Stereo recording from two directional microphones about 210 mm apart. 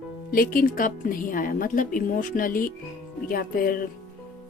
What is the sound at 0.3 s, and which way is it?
A woman's voice, 40° left (ahead or behind).